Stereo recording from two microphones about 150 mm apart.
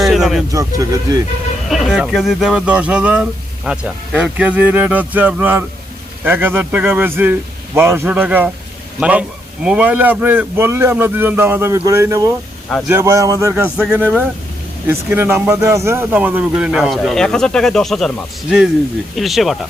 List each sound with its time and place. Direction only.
0.0 s a sound: centre (ahead or behind)
0.5 s speech: 20° right (ahead or behind)
1.7 s speech: centre (ahead or behind); by 13.5 s 20° right (ahead or behind)
13.5 s speech: 10° right (ahead or behind)
19.1 s speech: centre (ahead or behind)